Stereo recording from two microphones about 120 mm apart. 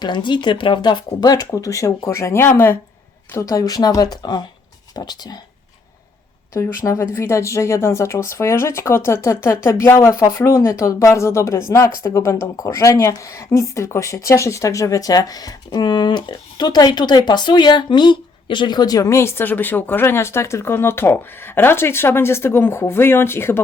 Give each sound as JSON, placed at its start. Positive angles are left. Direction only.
{"t": 0.0, "sound": "speech", "side_deg": 40}
{"t": 6.5, "sound": "speech", "side_deg": 25}